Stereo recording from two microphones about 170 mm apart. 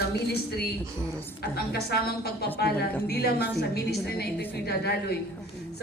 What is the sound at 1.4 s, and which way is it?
A woman's voice, 65° left (ahead or behind).